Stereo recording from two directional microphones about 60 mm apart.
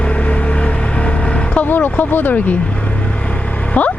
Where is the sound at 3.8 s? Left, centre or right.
Left.